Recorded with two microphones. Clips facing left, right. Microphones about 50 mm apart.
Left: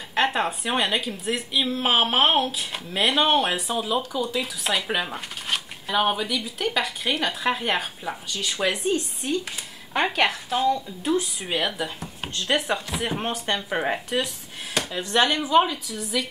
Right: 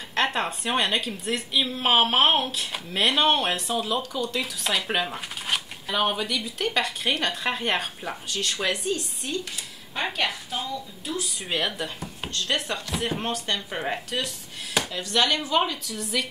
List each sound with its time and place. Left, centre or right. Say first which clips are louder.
0.1 s speech: left 2 dB; centre
8.8 s speech: left 4 dB; left
10.1 s speech: left 5 dB; left
11.4 s speech: left 2 dB; centre
12.4 s speech: left 4 dB; centre
15.0 s speech: left 4 dB; left
15.5 s speech: left 5 dB; centre